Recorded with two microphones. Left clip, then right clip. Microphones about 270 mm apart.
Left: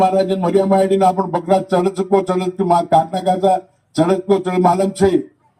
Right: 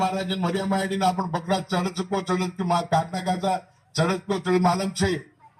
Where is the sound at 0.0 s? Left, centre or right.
Left.